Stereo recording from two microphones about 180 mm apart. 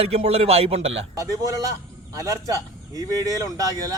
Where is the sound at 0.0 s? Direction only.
35° right (ahead or behind).